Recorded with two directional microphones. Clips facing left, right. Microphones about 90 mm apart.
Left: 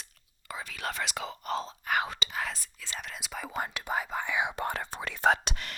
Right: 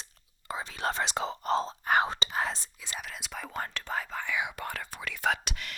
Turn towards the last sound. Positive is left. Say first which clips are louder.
# left 4 dB
turn(degrees=35)  # may be behind; listen again after turning